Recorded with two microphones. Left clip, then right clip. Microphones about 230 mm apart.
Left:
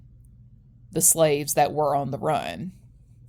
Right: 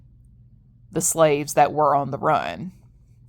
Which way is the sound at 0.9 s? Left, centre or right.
Right.